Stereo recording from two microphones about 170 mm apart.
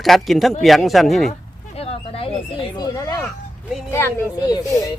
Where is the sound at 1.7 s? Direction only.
35° left (ahead or behind).